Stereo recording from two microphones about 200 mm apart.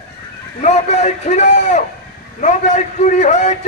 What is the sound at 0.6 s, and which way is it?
A man's voice, 35° left (ahead or behind).